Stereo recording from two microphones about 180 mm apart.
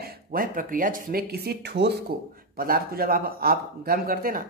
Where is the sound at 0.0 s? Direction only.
50° right (ahead or behind); by 1.9 s 70° right (ahead or behind).